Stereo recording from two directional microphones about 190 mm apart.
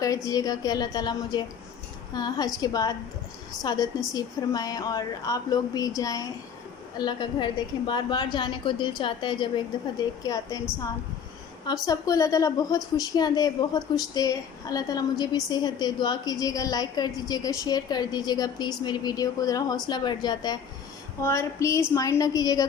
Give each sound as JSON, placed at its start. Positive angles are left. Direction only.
{"t": 0.0, "sound": "a woman's voice", "side_deg": 20}
{"t": 11.6, "sound": "a woman's voice", "side_deg": 20}